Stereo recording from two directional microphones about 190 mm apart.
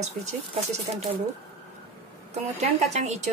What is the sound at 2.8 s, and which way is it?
Speech, 35° right (ahead or behind).